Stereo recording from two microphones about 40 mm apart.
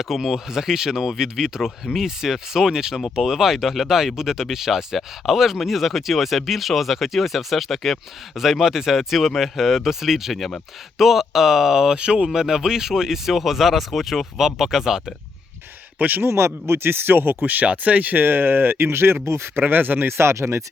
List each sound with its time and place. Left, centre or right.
0.0 s speech: centre
11.9 s speech: right
12.3 s speech: centre
16.0 s speech: right
16.2 s speech: right
17.4 s speech: right
19.6 s speech: right
20.1 s speech: right